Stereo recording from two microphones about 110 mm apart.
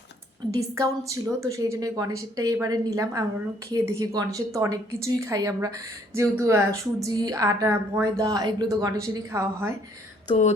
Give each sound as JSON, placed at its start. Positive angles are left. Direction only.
{"t": 0.5, "sound": "a woman's voice", "side_deg": -30}